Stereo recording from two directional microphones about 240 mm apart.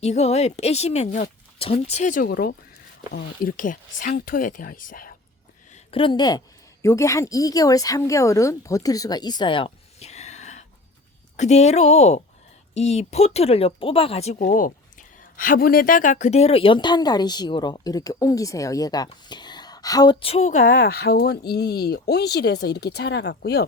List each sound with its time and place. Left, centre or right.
0.0 s speech: left
3.6 s speech: left
5.7 s a woman's voice: left